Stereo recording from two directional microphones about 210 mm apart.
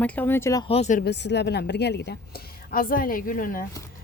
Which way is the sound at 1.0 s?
55° left (ahead or behind).